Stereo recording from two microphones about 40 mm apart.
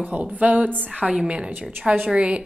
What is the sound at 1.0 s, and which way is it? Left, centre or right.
Speech, right.